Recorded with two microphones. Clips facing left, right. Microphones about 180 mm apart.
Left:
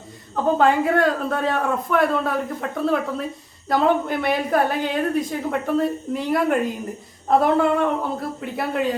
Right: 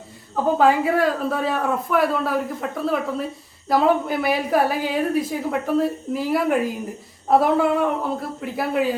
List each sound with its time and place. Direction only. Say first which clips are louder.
0.4 s a woman's voice: even; 5° right (ahead or behind)